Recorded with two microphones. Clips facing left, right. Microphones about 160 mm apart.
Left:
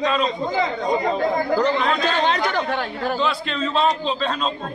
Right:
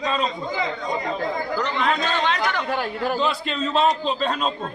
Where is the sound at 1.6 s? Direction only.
35° left (ahead or behind).